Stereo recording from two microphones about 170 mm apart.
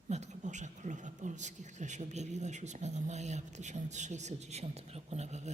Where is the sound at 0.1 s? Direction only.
40° right (ahead or behind).